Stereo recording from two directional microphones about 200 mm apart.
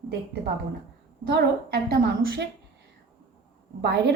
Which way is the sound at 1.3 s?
50° right (ahead or behind).